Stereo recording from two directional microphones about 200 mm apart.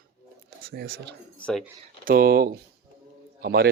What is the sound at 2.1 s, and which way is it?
Speech, 45° right (ahead or behind).